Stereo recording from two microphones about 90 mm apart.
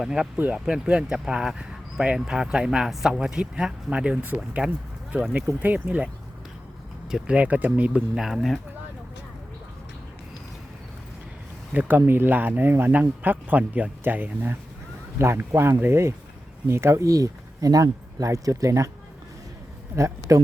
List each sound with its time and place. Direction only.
0.0 s speech: 5° right (ahead or behind)
7.1 s speech: 15° right (ahead or behind)
11.7 s speech: 20° right (ahead or behind); by 18.9 s 35° right (ahead or behind)
20.0 s speech: 35° right (ahead or behind)